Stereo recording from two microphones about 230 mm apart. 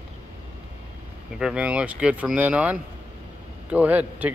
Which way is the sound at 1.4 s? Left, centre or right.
Centre.